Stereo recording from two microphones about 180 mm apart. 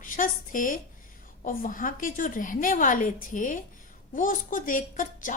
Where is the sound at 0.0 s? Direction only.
45° left (ahead or behind).